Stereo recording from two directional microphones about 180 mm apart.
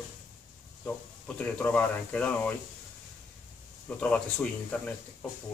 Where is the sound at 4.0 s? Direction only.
5° left (ahead or behind).